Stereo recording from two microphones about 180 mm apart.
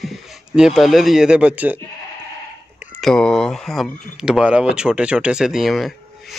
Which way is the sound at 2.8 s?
10° right (ahead or behind).